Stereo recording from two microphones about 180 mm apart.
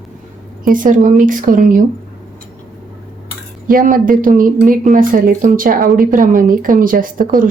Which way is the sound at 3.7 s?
50° right (ahead or behind).